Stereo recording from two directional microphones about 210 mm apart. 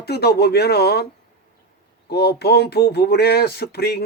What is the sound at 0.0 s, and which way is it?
Speech, 50° left (ahead or behind).